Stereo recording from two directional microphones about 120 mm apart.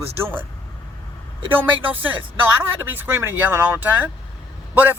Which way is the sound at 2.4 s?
15° right (ahead or behind).